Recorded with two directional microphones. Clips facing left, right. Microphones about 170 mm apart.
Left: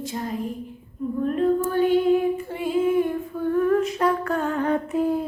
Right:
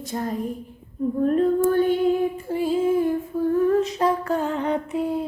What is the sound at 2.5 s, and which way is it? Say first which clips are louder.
Humming: right 1 dB; 35° right (ahead or behind).